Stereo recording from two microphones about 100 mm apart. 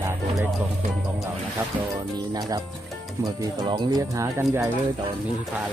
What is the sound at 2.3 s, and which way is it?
Speech, 40° right (ahead or behind).